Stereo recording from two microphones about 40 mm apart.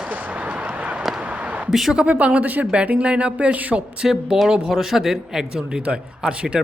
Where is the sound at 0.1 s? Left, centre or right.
Right.